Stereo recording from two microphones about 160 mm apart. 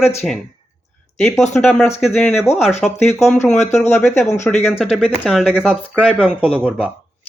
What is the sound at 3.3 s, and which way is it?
Speech, 45° left (ahead or behind).